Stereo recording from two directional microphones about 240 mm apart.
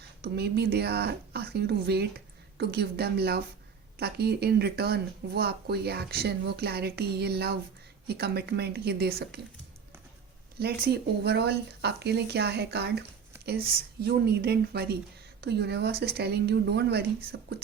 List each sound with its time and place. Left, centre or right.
0.2 s a woman's voice: right
10.6 s a woman's voice: right